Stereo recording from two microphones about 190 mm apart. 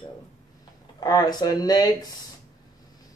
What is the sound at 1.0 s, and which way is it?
Speech, 20° left (ahead or behind).